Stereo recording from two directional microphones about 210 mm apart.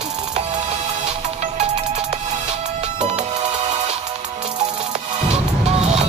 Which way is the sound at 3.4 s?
30° right (ahead or behind).